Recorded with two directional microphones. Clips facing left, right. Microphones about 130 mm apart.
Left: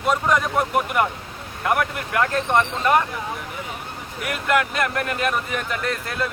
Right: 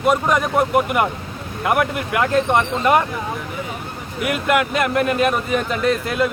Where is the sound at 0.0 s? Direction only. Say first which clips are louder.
Right 3 dB; 15° right (ahead or behind).